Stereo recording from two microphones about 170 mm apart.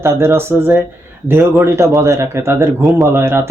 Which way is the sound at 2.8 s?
Centre (ahead or behind).